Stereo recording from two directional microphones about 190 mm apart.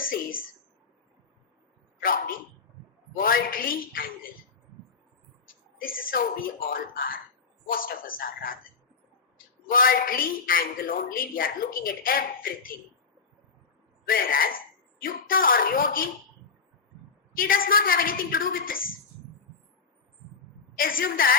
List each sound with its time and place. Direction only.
0.0 s a woman's voice: 50° left (ahead or behind)
2.0 s a woman's voice: 50° left (ahead or behind)
5.7 s a woman's voice: 50° left (ahead or behind)
9.6 s a woman's voice: 50° left (ahead or behind)
14.1 s a woman's voice: 50° left (ahead or behind)
17.3 s a woman's voice: 50° left (ahead or behind)
20.7 s a woman's voice: 50° left (ahead or behind)